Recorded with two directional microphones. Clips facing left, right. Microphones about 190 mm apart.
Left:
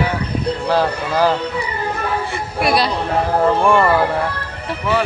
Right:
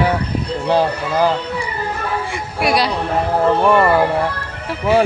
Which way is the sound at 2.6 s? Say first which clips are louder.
Even; 10° right (ahead or behind).